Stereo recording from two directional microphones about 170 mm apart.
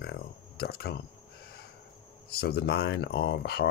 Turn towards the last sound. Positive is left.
turn(degrees=75)  # may be behind; listen again after turning